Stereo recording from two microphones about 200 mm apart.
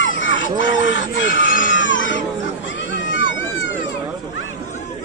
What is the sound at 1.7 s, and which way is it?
Baby cry, 70° left (ahead or behind).